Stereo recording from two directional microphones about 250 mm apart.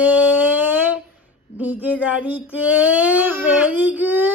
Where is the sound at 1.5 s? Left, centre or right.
Centre.